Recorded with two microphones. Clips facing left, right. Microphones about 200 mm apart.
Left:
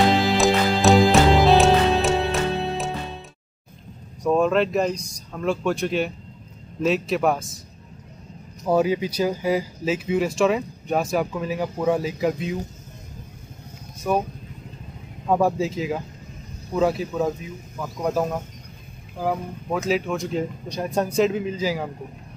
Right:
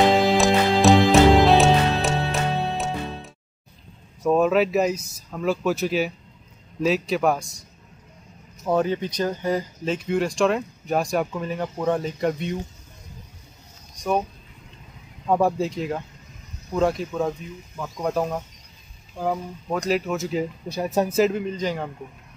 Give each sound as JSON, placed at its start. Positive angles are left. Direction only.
{"t": 0.4, "sound": "music", "side_deg": 0}
{"t": 4.2, "sound": "speech", "side_deg": -5}
{"t": 8.6, "sound": "speech", "side_deg": 10}
{"t": 14.0, "sound": "speech", "side_deg": 5}
{"t": 15.2, "sound": "speech", "side_deg": 0}
{"t": 19.7, "sound": "speech", "side_deg": 0}